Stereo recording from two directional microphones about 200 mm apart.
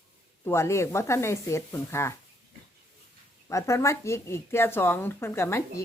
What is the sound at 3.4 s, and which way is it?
Speech, 15° left (ahead or behind).